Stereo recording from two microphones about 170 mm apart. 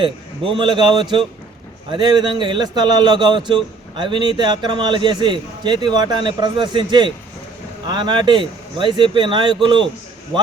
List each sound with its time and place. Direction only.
0.0 s a man's voice: 30° right (ahead or behind)